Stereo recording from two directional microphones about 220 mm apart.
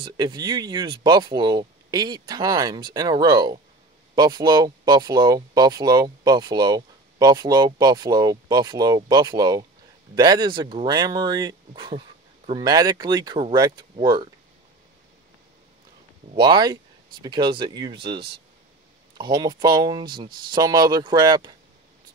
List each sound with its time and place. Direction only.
0.0 s speech: 20° right (ahead or behind)
16.3 s speech: 20° right (ahead or behind)
19.1 s speech: 20° right (ahead or behind)